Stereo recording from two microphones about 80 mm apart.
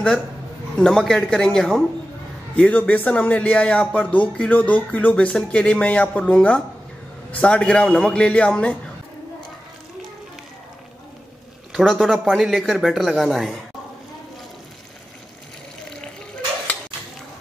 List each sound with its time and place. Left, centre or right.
0.7 s speech: centre
2.5 s speech: centre
11.7 s speech: centre